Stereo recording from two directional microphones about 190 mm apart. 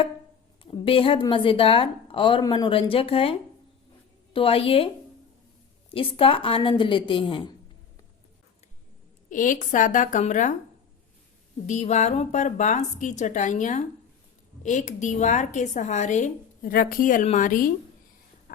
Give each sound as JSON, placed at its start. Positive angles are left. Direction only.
{"t": 0.6, "sound": "a woman's voice", "side_deg": 25}
{"t": 4.4, "sound": "a woman's voice", "side_deg": 30}
{"t": 5.9, "sound": "a woman's voice", "side_deg": 30}
{"t": 9.3, "sound": "a woman's voice", "side_deg": 45}
{"t": 11.6, "sound": "a woman's voice", "side_deg": 40}